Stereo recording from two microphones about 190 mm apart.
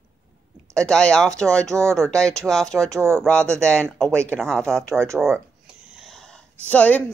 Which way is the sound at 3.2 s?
5° left (ahead or behind).